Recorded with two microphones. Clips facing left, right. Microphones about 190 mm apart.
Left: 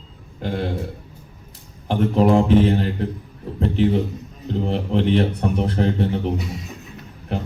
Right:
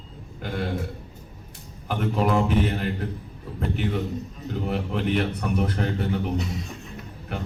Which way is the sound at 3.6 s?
30° left (ahead or behind).